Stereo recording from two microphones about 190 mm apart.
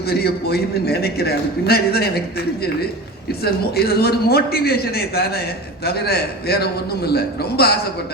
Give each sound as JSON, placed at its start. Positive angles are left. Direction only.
{"t": 0.1, "sound": "a man's voice", "side_deg": 55}
{"t": 3.4, "sound": "a man's voice", "side_deg": 55}